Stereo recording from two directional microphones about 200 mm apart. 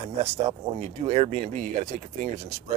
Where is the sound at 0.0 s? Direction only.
30° right (ahead or behind).